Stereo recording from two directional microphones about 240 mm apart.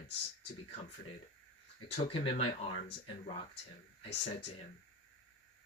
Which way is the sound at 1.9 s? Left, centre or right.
Left.